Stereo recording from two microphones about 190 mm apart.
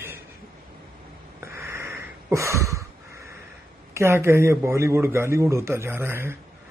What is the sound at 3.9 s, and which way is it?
A man's voice, 15° right (ahead or behind).